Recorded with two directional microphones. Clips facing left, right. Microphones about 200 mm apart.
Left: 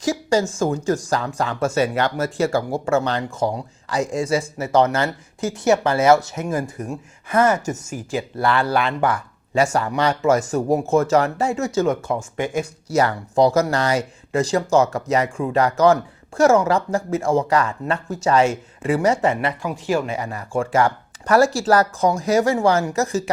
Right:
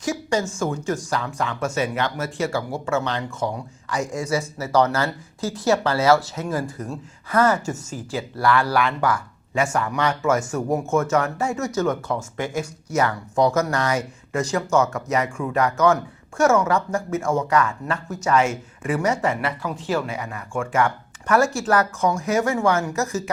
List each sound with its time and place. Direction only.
0.0 s speech: 35° left (ahead or behind); by 12.6 s 20° left (ahead or behind)
12.9 s speech: 35° left (ahead or behind); by 20.1 s 15° left (ahead or behind)
20.1 s speech: 35° left (ahead or behind)